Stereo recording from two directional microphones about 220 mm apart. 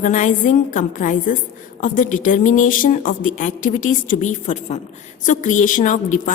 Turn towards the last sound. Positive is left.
turn(degrees=35)  # may be behind; listen again after turning